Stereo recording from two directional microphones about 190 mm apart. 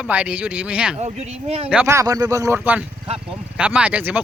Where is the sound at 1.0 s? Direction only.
35° right (ahead or behind).